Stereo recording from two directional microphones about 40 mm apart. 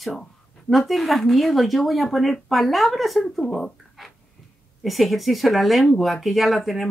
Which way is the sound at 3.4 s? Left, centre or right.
Centre.